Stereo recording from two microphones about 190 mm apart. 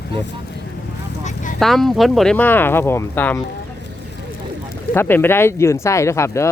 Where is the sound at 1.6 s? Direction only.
Centre (ahead or behind).